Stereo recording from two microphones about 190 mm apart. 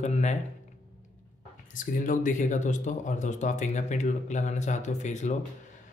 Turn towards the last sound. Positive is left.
turn(degrees=40)  # may be behind; listen again after turning